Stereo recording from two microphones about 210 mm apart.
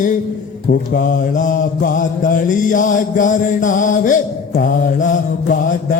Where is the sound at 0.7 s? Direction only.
45° left (ahead or behind).